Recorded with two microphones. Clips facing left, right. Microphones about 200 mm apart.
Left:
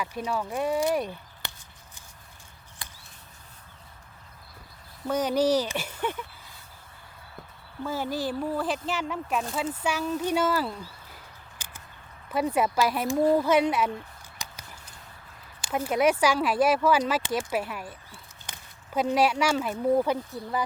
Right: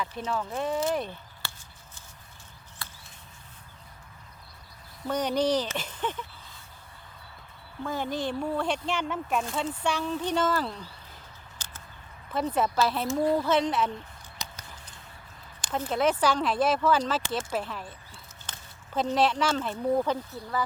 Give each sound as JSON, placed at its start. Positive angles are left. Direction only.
{"t": 0.0, "sound": "speech", "side_deg": 10}
{"t": 2.8, "sound": "a sound", "side_deg": 15}
{"t": 5.0, "sound": "speech", "side_deg": 5}
{"t": 7.9, "sound": "speech", "side_deg": 5}
{"t": 12.3, "sound": "speech", "side_deg": 10}
{"t": 15.6, "sound": "speech", "side_deg": 10}